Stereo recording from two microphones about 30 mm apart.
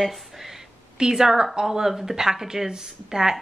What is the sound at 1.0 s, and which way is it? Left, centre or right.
Speech, centre.